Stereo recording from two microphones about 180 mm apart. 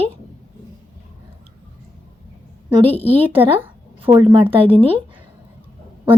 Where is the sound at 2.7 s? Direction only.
30° right (ahead or behind).